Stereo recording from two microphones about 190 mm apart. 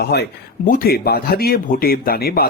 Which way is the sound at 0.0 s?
60° left (ahead or behind).